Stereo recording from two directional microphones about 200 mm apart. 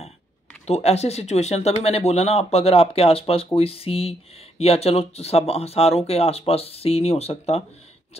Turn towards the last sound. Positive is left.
turn(degrees=30)  # may be behind; listen again after turning